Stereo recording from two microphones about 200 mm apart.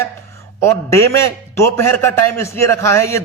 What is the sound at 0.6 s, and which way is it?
A man's voice, 15° left (ahead or behind).